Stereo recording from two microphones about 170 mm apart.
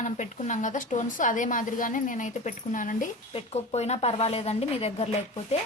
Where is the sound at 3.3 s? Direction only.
40° left (ahead or behind).